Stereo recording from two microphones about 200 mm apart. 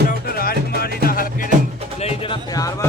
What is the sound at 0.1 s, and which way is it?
Music, 50° left (ahead or behind).